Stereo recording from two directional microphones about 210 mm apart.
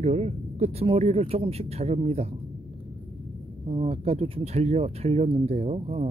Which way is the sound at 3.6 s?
25° right (ahead or behind).